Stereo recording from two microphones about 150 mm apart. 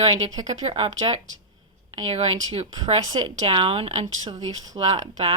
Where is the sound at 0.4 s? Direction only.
50° right (ahead or behind).